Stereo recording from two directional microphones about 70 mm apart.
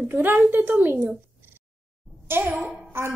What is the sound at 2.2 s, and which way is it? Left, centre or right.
Speech, right.